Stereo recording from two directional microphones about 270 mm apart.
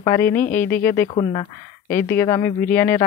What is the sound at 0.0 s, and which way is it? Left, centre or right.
Speech, centre.